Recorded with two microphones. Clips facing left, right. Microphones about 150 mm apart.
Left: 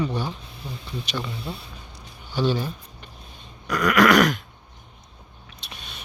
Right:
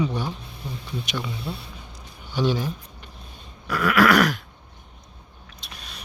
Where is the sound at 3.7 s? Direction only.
5° right (ahead or behind).